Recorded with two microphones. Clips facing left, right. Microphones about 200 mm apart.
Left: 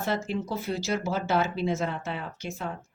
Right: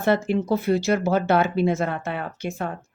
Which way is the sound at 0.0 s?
60° right (ahead or behind).